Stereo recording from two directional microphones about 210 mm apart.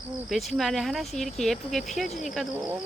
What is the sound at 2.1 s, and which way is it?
Speech, 35° left (ahead or behind).